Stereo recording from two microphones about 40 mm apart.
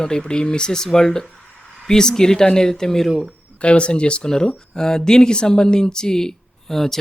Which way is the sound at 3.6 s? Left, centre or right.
Left.